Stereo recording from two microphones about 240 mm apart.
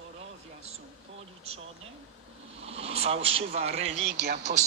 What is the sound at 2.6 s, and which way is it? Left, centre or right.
A man's voice, right.